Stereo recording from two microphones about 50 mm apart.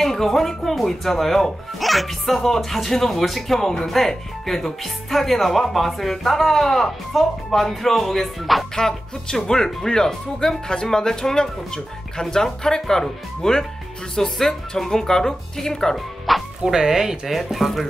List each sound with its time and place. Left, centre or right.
0.0 s speech: centre
16.3 s speech: centre